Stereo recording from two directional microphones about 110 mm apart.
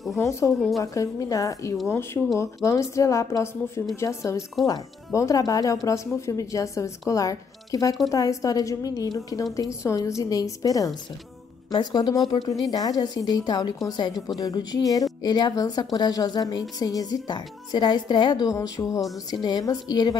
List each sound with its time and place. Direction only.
0.2 s a woman's voice: 25° left (ahead or behind)
0.6 s a woman's voice: centre (ahead or behind)
0.9 s a woman's voice: 30° left (ahead or behind)
18.5 s a woman's voice: 30° left (ahead or behind)